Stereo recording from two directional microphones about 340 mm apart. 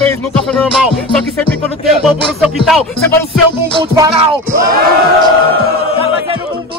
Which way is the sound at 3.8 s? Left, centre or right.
Centre.